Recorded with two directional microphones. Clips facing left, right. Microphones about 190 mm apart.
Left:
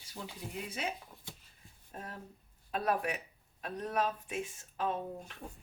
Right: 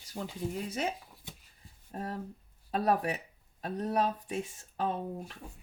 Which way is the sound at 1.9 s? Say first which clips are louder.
Right 8 dB; 35° right (ahead or behind).